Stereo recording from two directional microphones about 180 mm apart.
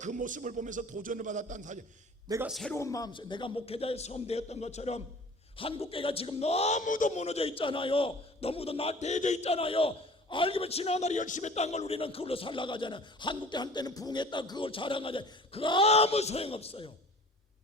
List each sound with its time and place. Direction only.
0.0 s a man's voice: 45° right (ahead or behind)
2.5 s a man's voice: centre (ahead or behind)
2.7 s a man's voice: 15° left (ahead or behind)